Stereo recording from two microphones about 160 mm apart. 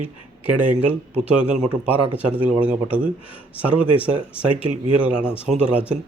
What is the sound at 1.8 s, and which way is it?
Speech, 10° right (ahead or behind).